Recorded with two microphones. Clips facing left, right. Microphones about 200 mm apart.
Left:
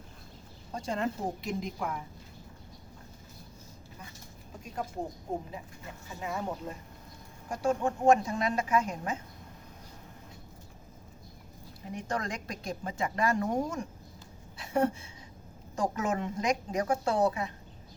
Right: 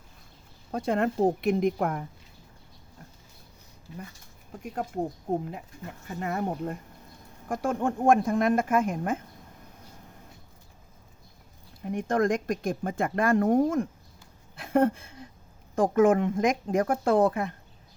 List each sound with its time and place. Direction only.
0.7 s speech: 60° right (ahead or behind)
4.6 s speech: 60° right (ahead or behind)
6.1 s speech: 60° right (ahead or behind)
11.9 s speech: 55° right (ahead or behind)
14.5 s a sound: 55° right (ahead or behind)
15.7 s speech: 55° right (ahead or behind)